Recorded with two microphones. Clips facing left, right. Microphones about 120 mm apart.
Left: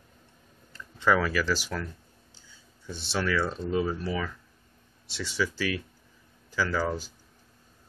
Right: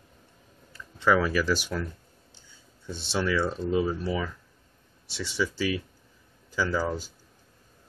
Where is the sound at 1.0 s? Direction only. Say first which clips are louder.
Right 1 dB; 15° right (ahead or behind).